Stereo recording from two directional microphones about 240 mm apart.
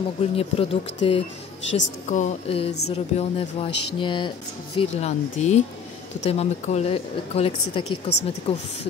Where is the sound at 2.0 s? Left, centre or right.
Left.